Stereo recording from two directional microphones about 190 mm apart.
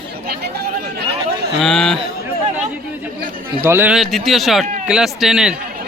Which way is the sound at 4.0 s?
Centre (ahead or behind).